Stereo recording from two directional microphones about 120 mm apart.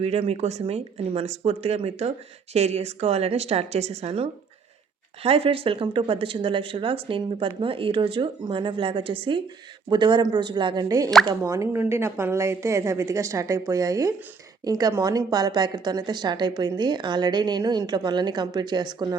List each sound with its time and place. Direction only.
0.0 s a woman's voice: 55° right (ahead or behind); by 10.8 s 40° right (ahead or behind)
10.8 s a woman's voice: 30° right (ahead or behind)